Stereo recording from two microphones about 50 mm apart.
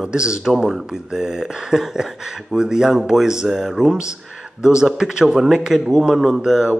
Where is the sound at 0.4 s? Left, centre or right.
Centre.